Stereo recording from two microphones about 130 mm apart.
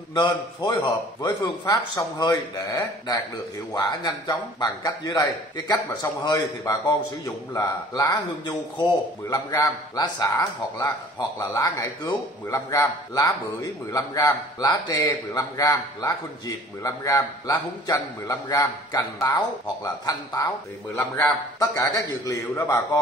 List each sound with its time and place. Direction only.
0.1 s a man's voice: 35° left (ahead or behind)
21.5 s a man's voice: 30° left (ahead or behind)